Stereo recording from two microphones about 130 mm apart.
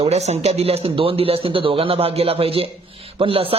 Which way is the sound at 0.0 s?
60° right (ahead or behind).